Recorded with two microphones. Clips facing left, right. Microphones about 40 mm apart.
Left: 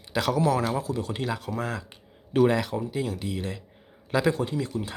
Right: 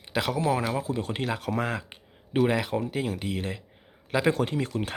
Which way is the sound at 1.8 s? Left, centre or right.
Right.